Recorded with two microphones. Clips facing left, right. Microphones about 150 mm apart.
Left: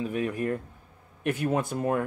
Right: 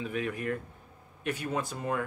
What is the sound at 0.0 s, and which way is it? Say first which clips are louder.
Speech: left 4 dB; 40° left (ahead or behind).